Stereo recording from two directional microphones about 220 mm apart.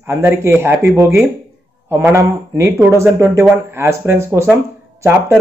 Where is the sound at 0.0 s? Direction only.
10° right (ahead or behind).